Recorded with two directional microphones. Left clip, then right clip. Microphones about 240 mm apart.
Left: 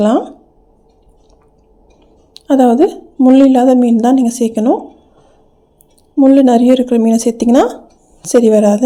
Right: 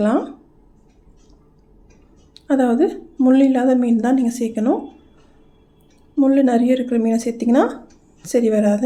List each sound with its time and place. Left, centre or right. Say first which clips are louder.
0.0 s a woman's voice: left 6 dB; left
2.3 s a woman's voice: left 8 dB; left
6.1 s a woman's voice: left 7 dB; left